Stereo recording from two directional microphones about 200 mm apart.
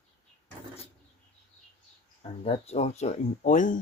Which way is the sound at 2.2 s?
30° left (ahead or behind).